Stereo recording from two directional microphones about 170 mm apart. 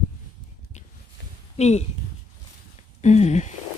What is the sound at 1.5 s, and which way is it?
Speech, 40° left (ahead or behind).